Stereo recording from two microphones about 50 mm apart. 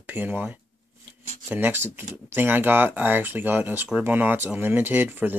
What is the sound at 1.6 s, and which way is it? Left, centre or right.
Speech, right.